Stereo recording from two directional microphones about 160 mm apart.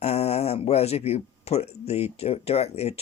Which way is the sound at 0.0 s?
40° left (ahead or behind).